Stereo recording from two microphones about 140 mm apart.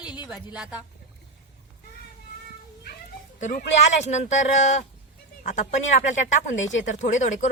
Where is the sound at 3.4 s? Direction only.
65° left (ahead or behind).